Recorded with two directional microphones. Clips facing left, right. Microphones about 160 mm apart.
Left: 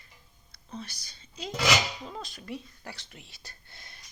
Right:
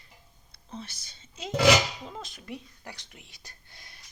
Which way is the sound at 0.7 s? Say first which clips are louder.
Even; 25° right (ahead or behind).